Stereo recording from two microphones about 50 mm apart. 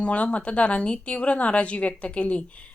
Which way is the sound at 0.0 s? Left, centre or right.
Left.